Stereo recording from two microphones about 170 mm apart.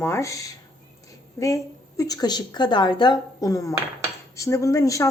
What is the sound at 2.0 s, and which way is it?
A woman's voice, 20° left (ahead or behind).